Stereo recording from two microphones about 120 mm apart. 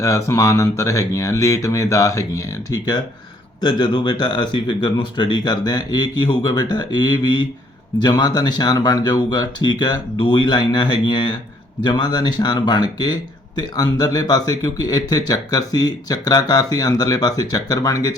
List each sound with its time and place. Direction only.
0.0 s a man's voice: 25° left (ahead or behind)